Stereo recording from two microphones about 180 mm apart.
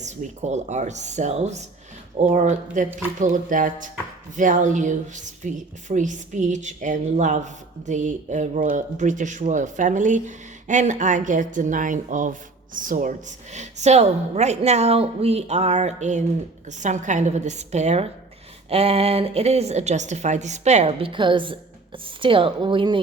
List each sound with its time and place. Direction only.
0.0 s a woman's voice: 40° right (ahead or behind)